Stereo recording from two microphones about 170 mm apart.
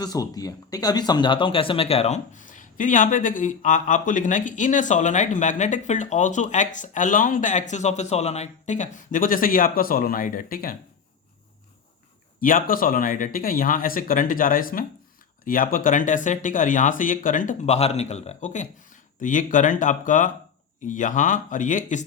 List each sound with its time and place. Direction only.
0.0 s a man's voice: 20° left (ahead or behind); by 10.8 s 55° left (ahead or behind)
12.4 s a man's voice: 55° left (ahead or behind)